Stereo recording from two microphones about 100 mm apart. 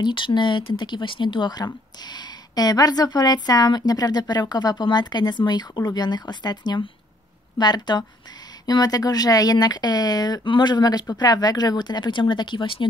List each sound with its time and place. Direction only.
0.0 s speech: 50° left (ahead or behind)